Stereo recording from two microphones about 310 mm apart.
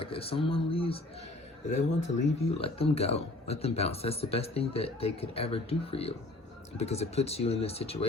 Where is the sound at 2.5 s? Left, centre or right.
Centre.